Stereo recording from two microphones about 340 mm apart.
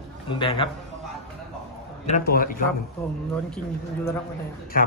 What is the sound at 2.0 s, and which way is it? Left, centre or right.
Speech, left.